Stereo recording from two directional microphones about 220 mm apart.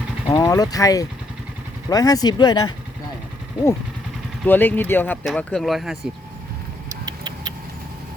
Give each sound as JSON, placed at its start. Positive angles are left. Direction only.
{"t": 0.3, "sound": "speech", "side_deg": 15}
{"t": 4.4, "sound": "speech", "side_deg": 10}
{"t": 7.0, "sound": "a sound", "side_deg": -20}